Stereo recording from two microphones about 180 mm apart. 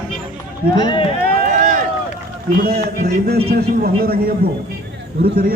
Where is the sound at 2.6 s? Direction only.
60° right (ahead or behind).